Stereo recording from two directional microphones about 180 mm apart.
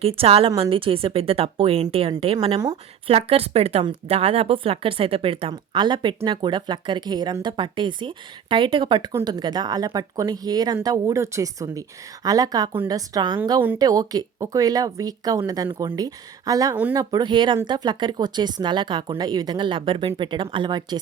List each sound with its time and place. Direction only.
0.0 s speech: 35° right (ahead or behind)
13.4 s speech: 10° right (ahead or behind)